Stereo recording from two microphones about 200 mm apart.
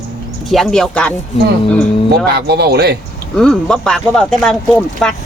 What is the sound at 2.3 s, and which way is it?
Speech, 55° right (ahead or behind).